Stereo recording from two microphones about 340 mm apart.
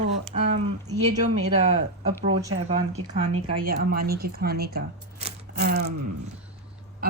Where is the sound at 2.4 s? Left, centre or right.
Centre.